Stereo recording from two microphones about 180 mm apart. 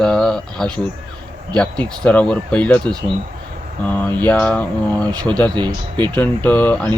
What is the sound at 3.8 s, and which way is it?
Speech, 10° left (ahead or behind).